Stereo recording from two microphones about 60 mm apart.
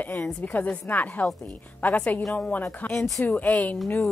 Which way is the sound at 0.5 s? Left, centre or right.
Left.